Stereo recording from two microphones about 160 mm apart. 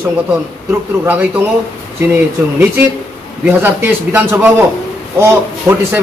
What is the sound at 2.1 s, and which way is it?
A man's voice, 10° right (ahead or behind).